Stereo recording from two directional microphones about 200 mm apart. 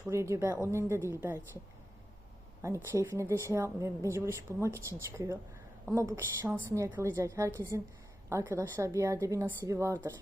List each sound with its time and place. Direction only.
0.1 s a woman's voice: 15° right (ahead or behind)
2.6 s a woman's voice: 15° right (ahead or behind)